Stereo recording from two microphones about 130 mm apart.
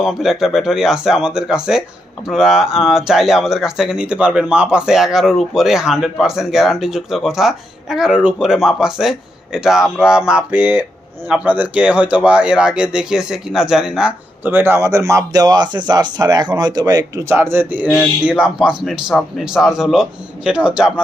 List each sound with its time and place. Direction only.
0.0 s speech: centre (ahead or behind)